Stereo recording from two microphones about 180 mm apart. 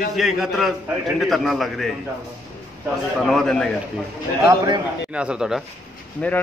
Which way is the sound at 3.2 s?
Centre (ahead or behind).